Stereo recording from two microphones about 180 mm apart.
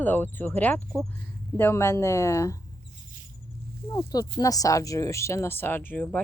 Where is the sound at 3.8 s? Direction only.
20° left (ahead or behind).